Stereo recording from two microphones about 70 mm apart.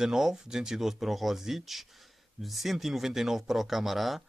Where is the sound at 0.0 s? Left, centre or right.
Centre.